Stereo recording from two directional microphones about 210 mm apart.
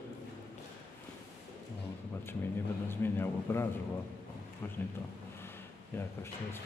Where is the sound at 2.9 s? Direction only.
10° left (ahead or behind).